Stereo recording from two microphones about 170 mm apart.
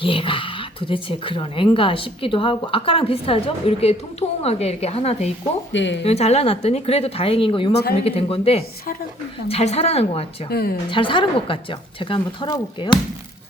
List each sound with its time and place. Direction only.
0.0 s speech: 30° left (ahead or behind)
5.7 s speech: 90° left
6.0 s speech: 35° left (ahead or behind)
10.5 s speech: 65° left (ahead or behind)
10.8 s a woman's voice: 30° left (ahead or behind)